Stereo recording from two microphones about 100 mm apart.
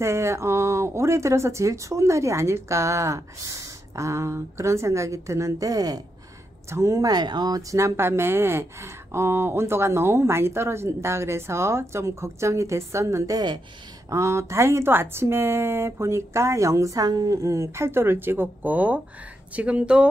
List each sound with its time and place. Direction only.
0.0 s speech: 25° right (ahead or behind); by 20.1 s 10° right (ahead or behind)